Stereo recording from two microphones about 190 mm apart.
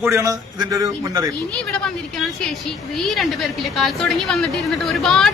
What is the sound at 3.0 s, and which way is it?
A man's voice, centre (ahead or behind).